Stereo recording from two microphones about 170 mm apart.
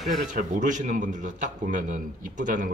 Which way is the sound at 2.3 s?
50° right (ahead or behind).